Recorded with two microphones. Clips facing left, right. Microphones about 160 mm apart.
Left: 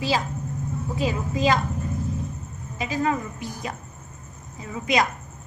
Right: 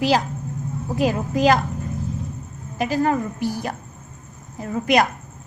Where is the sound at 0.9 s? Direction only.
65° right (ahead or behind).